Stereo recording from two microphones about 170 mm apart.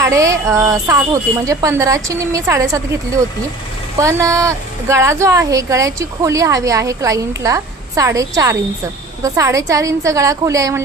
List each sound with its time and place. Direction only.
0.0 s a woman's voice: 20° right (ahead or behind)
3.9 s a woman's voice: 20° right (ahead or behind)